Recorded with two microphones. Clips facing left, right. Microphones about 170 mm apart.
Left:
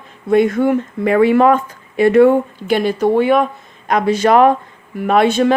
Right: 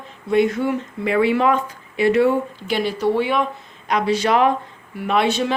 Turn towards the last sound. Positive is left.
turn(degrees=50)  # may be behind; listen again after turning